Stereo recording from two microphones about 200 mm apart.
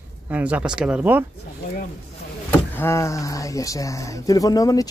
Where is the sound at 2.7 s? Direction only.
10° left (ahead or behind).